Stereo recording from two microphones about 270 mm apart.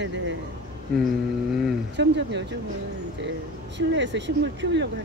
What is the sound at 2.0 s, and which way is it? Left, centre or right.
Speech, right.